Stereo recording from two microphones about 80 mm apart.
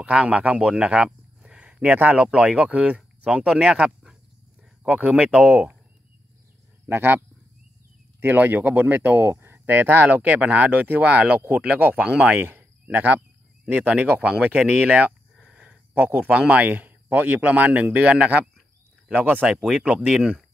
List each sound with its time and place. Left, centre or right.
0.0 s speech: centre
6.9 s speech: right; by 20.4 s centre